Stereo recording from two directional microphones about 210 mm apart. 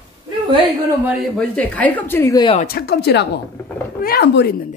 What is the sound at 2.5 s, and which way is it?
Speech, 45° left (ahead or behind).